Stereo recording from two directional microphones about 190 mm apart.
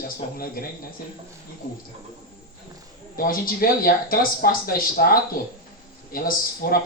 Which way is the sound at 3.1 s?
50° left (ahead or behind).